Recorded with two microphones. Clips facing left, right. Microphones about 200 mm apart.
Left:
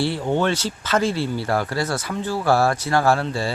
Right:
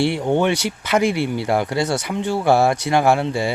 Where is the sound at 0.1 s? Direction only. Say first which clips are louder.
Right 3 dB; 20° right (ahead or behind).